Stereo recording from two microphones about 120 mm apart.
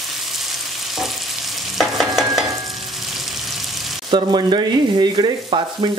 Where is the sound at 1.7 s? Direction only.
Centre (ahead or behind).